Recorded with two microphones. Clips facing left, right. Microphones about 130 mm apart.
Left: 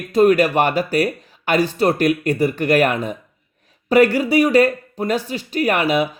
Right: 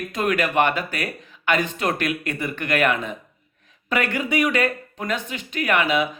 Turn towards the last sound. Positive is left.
turn(degrees=35)  # may be behind; listen again after turning